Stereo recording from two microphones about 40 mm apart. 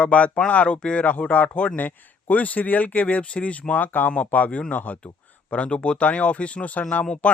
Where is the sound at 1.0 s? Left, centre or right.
Left.